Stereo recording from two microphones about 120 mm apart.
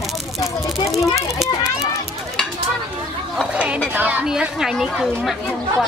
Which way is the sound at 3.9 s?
10° right (ahead or behind).